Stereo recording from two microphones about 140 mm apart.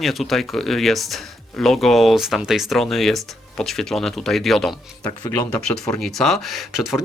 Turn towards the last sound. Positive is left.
turn(degrees=-5)  # may be behind; listen again after turning